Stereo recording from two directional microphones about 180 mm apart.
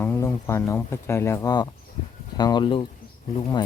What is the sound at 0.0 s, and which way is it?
Speech, 15° left (ahead or behind).